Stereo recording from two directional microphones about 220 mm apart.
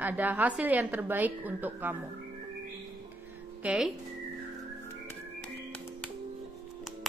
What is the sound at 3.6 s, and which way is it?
Speech, 5° right (ahead or behind).